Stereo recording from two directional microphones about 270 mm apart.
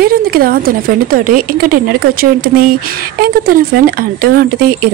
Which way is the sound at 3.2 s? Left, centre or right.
Right.